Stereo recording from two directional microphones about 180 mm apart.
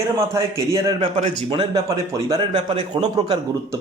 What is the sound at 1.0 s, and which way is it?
Speech, 40° right (ahead or behind).